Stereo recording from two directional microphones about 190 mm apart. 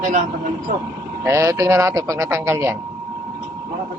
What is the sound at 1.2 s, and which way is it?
Speech, 15° right (ahead or behind).